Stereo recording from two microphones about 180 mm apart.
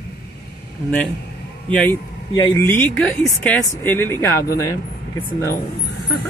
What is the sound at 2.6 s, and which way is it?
Speech, 10° left (ahead or behind).